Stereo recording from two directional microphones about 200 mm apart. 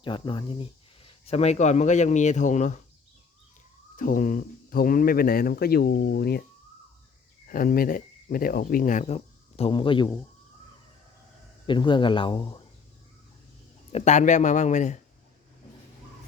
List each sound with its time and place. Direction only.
0.0 s speech: 25° left (ahead or behind)
3.9 s speech: 40° left (ahead or behind)
7.4 s speech: 45° left (ahead or behind); by 10.2 s 25° left (ahead or behind)
11.6 s speech: 25° left (ahead or behind)
13.9 s a man's voice: 35° left (ahead or behind)